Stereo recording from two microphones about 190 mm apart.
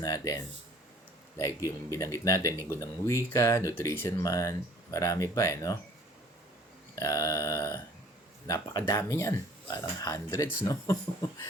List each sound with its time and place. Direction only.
0.0 s speech: 15° left (ahead or behind)
1.4 s speech: 15° left (ahead or behind)
6.9 s speech: 20° left (ahead or behind)